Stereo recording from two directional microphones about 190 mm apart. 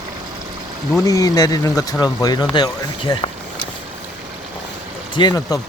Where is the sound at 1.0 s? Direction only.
20° left (ahead or behind).